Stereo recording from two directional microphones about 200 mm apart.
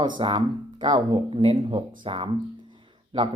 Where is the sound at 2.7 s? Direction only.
25° right (ahead or behind).